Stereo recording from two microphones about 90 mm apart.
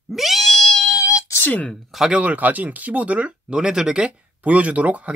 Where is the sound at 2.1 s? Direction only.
15° right (ahead or behind).